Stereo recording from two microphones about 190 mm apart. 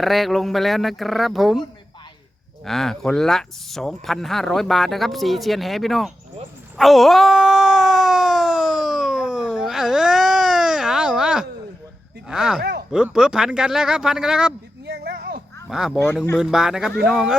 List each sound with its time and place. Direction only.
0.0 s speech: centre (ahead or behind)
2.6 s speech: centre (ahead or behind)
6.7 s a sound: centre (ahead or behind)
12.3 s speech: centre (ahead or behind)
14.8 s a sound: 55° right (ahead or behind)
15.7 s speech: centre (ahead or behind)